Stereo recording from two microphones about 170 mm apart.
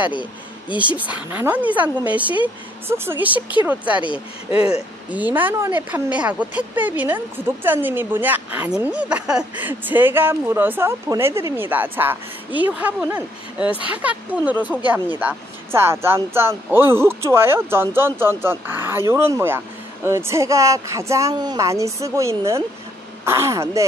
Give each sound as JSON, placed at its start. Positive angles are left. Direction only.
{"t": 0.7, "sound": "a woman's voice", "side_deg": -10}
{"t": 4.6, "sound": "speech", "side_deg": 35}
{"t": 5.1, "sound": "a woman's voice", "side_deg": -10}